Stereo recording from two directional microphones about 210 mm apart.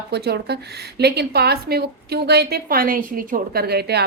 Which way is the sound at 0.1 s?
50° right (ahead or behind).